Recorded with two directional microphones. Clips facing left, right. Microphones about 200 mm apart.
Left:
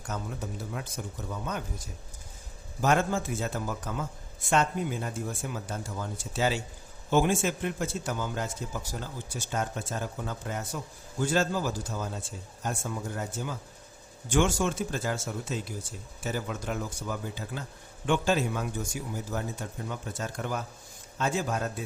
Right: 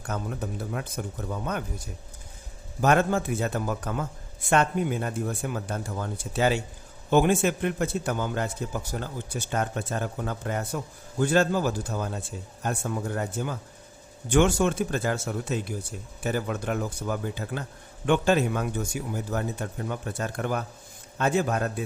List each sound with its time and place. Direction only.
0.1 s a man's voice: 55° right (ahead or behind)
2.8 s a man's voice: 60° right (ahead or behind)